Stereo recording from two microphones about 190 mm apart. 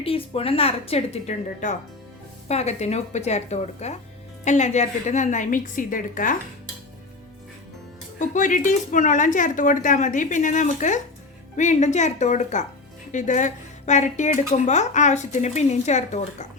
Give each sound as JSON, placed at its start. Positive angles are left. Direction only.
{"t": 0.0, "sound": "speech", "side_deg": 30}
{"t": 8.2, "sound": "speech", "side_deg": 40}